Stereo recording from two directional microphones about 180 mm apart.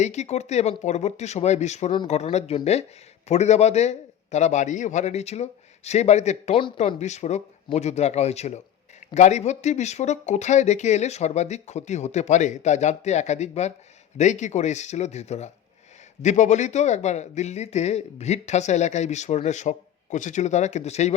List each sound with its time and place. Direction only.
0.0 s a man's voice: 40° left (ahead or behind)